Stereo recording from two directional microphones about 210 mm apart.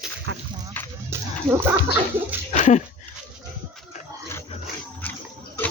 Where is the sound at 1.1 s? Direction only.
15° right (ahead or behind).